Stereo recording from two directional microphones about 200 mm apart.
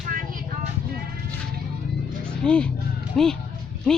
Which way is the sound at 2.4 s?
5° left (ahead or behind).